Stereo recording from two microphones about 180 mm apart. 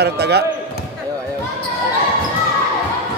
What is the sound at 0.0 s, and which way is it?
Speech, 65° right (ahead or behind).